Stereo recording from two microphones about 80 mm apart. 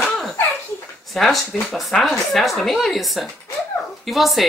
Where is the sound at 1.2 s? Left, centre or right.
Centre.